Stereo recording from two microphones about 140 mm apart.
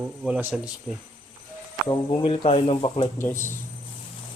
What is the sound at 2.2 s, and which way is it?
Speech, 40° left (ahead or behind).